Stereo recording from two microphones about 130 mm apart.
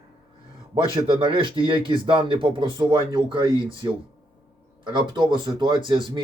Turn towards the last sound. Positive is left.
turn(degrees=-35)  # may be behind; listen again after turning